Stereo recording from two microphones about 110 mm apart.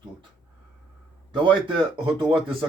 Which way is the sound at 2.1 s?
55° right (ahead or behind).